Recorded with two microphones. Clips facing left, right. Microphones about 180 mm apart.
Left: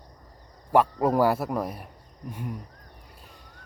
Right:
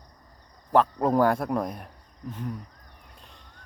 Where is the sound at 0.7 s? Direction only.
10° left (ahead or behind).